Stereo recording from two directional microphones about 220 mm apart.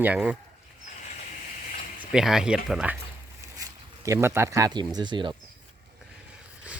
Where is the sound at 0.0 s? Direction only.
5° right (ahead or behind).